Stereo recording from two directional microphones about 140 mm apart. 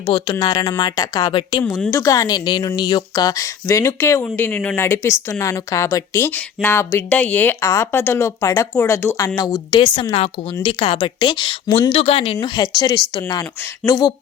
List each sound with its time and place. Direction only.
0.0 s a woman's voice: 35° left (ahead or behind)
1.9 s a woman's voice: 25° left (ahead or behind); by 12.6 s 40° left (ahead or behind)
12.6 s speech: 25° left (ahead or behind)